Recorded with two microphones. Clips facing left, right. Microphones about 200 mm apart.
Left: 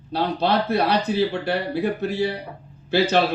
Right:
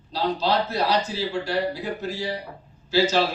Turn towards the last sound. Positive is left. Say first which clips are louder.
# left 2 dB
turn(degrees=60)  # may be behind; listen again after turning